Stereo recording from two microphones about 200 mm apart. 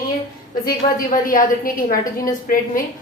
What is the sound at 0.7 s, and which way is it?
A woman's voice, 45° left (ahead or behind).